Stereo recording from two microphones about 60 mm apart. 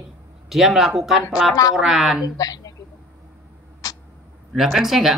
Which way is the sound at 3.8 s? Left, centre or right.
Left.